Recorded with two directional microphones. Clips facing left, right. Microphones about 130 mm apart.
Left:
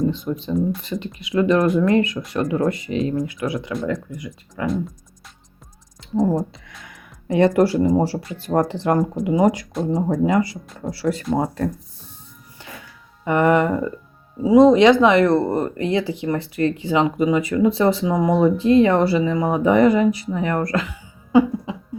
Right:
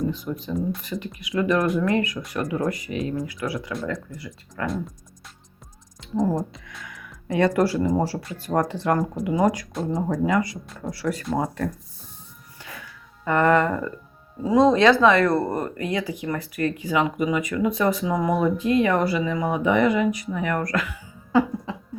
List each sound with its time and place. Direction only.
0.3 s speech: 30° left (ahead or behind); by 4.6 s 15° left (ahead or behind)
6.1 s speech: 35° left (ahead or behind)
12.6 s music: 25° left (ahead or behind)
13.2 s speech: 15° left (ahead or behind)